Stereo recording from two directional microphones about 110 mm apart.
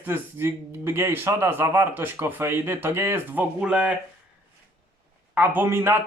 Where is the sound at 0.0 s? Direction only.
20° right (ahead or behind).